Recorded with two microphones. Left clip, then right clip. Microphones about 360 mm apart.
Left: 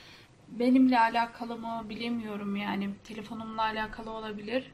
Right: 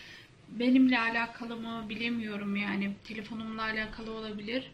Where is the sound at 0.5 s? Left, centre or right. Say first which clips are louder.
Left 1 dB; left.